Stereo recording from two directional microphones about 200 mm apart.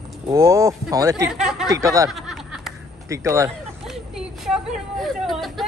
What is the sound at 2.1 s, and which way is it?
Snicker, centre (ahead or behind).